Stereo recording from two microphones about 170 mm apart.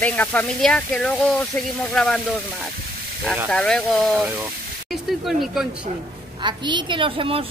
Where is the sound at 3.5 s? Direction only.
5° left (ahead or behind).